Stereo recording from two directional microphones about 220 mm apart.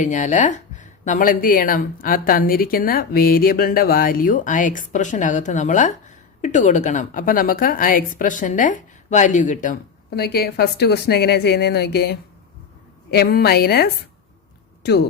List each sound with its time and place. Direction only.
0.0 s speech: 35° left (ahead or behind)
10.2 s a woman's voice: 45° left (ahead or behind)